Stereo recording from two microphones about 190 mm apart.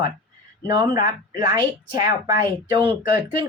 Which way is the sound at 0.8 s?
20° right (ahead or behind).